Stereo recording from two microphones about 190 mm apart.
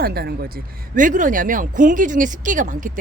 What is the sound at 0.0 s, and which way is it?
Speech, 55° right (ahead or behind).